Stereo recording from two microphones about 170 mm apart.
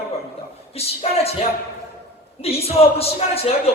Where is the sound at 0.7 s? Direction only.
35° left (ahead or behind).